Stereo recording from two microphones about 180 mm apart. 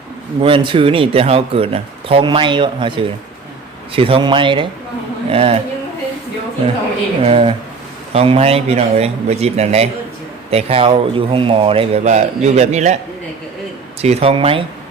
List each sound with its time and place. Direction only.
0.4 s speech: 30° right (ahead or behind)
7.2 s speech: 35° right (ahead or behind)
14.0 s speech: 35° right (ahead or behind)